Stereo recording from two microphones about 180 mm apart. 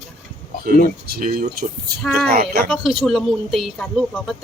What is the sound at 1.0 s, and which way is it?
Speech, 55° right (ahead or behind).